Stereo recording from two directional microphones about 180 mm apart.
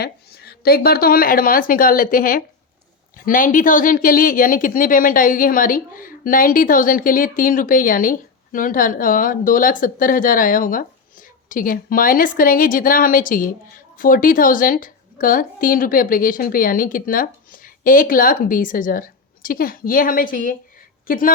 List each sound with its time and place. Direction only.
0.0 s speech: 60° left (ahead or behind)